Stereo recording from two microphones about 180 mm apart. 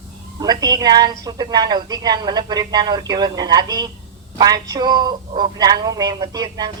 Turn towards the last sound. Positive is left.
turn(degrees=-20)  # may be behind; listen again after turning